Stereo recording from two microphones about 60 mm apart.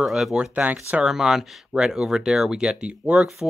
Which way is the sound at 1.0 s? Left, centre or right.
Centre.